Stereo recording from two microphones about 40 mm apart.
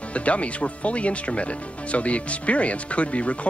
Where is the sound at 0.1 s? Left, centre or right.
Left.